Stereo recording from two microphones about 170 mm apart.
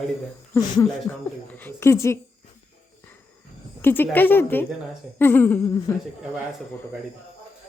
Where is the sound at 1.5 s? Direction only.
15° left (ahead or behind).